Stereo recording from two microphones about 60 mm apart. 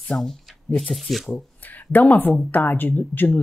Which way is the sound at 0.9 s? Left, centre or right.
Centre.